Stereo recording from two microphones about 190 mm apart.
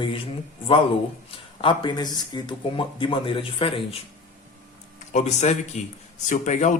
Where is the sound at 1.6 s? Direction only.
25° left (ahead or behind).